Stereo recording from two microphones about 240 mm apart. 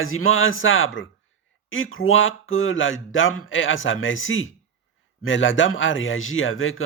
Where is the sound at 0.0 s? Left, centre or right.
Left.